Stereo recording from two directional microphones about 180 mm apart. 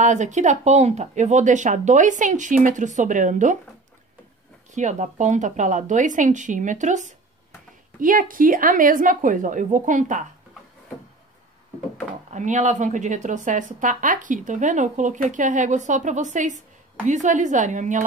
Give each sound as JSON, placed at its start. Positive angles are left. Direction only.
{"t": 0.0, "sound": "a woman's voice", "side_deg": -40}
{"t": 4.7, "sound": "a woman's voice", "side_deg": -40}
{"t": 12.3, "sound": "a woman's voice", "side_deg": -40}